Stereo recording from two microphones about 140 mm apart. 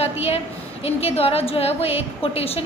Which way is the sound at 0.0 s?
45° left (ahead or behind).